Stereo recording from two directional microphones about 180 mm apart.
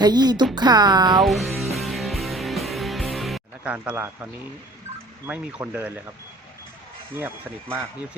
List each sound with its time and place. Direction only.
0.0 s speech: 25° right (ahead or behind)
1.2 s music: centre (ahead or behind)
5.2 s speech: 10° right (ahead or behind)
7.2 s speech: 10° right (ahead or behind)